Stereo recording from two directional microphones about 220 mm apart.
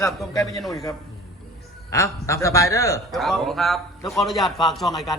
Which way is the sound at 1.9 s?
15° left (ahead or behind).